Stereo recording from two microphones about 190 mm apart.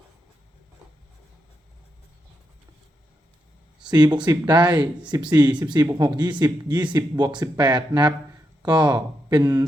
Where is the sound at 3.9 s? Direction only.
20° right (ahead or behind).